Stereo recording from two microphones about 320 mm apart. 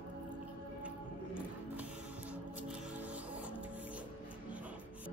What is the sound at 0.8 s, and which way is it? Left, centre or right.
Music, centre.